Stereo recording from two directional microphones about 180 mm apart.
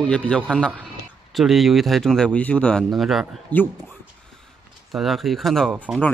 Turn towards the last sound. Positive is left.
turn(degrees=-10)  # may be behind; listen again after turning